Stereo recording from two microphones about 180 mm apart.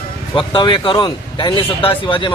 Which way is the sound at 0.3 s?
25° left (ahead or behind).